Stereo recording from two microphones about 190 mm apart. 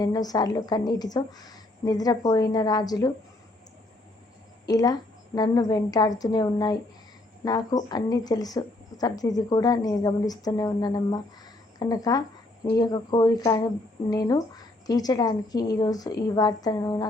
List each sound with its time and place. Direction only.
0.0 s speech: 20° left (ahead or behind)
4.6 s speech: 20° left (ahead or behind)